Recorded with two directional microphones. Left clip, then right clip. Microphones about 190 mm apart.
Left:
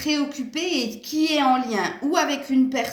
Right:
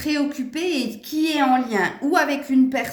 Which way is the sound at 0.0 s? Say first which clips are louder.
Right 1 dB; 50° right (ahead or behind).